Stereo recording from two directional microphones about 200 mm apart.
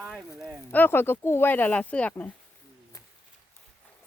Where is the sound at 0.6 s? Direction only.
10° left (ahead or behind).